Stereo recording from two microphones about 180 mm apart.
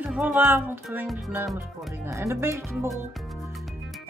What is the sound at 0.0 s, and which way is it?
Speech, 10° right (ahead or behind).